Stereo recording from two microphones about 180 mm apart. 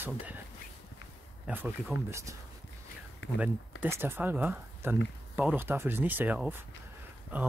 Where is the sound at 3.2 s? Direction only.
80° left.